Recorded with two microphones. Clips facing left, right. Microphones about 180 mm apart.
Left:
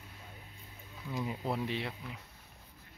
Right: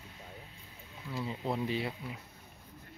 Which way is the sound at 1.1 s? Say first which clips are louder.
Left 1 dB; 20° left (ahead or behind).